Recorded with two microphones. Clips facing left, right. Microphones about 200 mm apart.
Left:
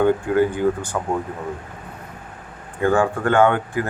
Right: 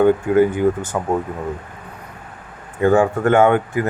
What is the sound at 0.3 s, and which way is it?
Speech, 20° right (ahead or behind).